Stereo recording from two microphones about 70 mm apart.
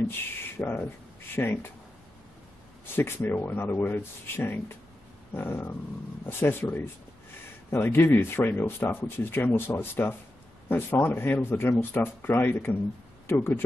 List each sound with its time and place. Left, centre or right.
0.6 s speech: left
3.0 s speech: left
7.7 s speech: left